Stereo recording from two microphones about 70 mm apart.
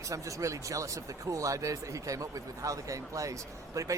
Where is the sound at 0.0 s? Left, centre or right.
Right.